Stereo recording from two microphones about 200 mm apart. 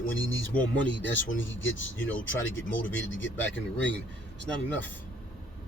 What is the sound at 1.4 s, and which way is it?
Speech, 70° left (ahead or behind).